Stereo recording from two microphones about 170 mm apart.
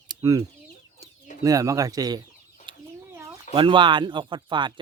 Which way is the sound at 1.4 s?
20° right (ahead or behind).